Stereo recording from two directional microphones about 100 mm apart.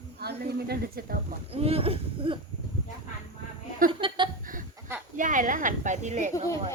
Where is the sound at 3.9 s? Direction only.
60° right (ahead or behind).